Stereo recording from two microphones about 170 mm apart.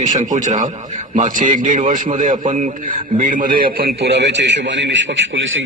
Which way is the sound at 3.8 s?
70° right (ahead or behind).